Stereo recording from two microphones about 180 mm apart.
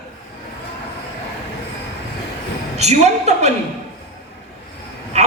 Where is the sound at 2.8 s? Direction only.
40° right (ahead or behind).